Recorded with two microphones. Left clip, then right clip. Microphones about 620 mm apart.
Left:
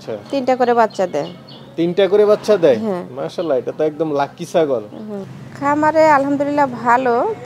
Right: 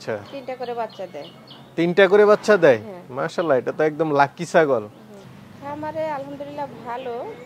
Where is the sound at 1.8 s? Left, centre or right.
Right.